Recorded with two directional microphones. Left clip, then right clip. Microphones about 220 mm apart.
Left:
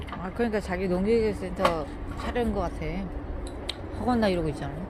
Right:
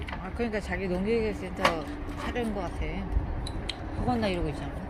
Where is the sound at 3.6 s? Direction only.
20° left (ahead or behind).